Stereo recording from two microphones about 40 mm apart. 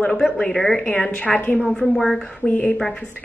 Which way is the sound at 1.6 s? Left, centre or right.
Left.